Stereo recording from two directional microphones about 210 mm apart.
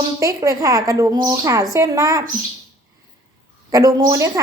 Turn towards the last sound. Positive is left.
turn(degrees=-15)  # may be behind; listen again after turning